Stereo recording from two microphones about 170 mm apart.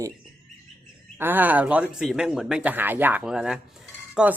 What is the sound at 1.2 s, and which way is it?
Speech, 10° right (ahead or behind).